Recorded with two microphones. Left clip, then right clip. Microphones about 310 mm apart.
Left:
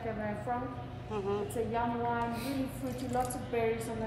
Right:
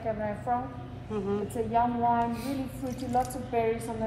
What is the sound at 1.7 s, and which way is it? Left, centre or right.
Speech, centre.